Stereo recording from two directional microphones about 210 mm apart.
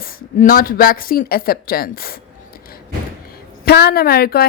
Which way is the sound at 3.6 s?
50° left (ahead or behind).